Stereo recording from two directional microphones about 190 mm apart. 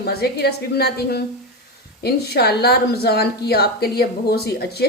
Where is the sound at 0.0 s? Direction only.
55° left (ahead or behind).